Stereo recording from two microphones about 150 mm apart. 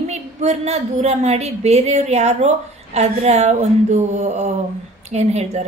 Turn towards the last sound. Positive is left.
turn(degrees=-50)  # may be behind; listen again after turning